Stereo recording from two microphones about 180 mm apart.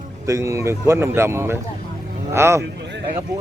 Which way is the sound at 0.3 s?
15° right (ahead or behind).